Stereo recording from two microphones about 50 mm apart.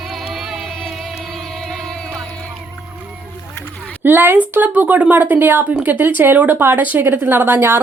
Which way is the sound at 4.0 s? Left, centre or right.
Right.